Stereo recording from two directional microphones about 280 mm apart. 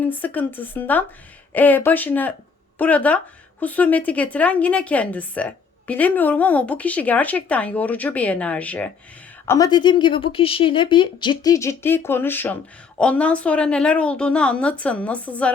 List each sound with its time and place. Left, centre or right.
0.0 s a woman's voice: centre